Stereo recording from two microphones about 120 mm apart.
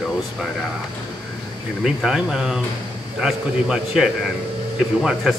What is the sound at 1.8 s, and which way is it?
Speech, 5° right (ahead or behind).